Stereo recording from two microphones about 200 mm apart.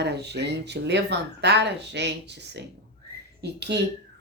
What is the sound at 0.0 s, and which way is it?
Speech, 55° right (ahead or behind).